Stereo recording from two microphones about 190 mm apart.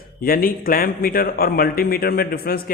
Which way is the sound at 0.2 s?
50° left (ahead or behind).